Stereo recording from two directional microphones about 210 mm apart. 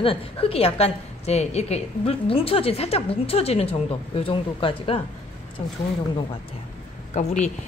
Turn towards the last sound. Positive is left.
turn(degrees=35)  # may be behind; listen again after turning